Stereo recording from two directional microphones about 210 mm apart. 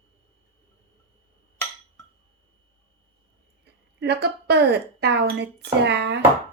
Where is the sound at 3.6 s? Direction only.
50° right (ahead or behind).